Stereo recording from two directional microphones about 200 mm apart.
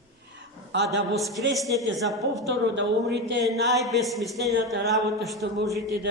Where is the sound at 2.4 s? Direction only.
60° right (ahead or behind).